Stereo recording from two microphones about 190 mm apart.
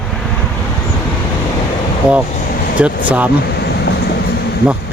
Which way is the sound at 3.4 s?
60° left (ahead or behind).